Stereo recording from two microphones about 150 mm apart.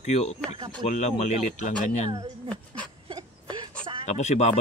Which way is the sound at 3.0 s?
30° right (ahead or behind).